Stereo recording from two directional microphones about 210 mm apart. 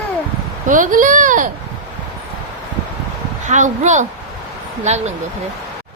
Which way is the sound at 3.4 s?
35° right (ahead or behind).